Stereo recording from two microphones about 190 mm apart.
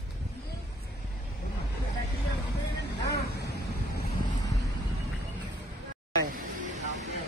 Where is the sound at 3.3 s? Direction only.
60° left (ahead or behind).